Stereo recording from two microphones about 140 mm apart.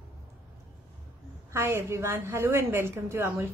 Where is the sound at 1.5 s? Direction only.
15° right (ahead or behind).